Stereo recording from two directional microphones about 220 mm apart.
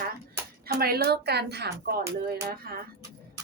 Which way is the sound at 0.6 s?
45° right (ahead or behind).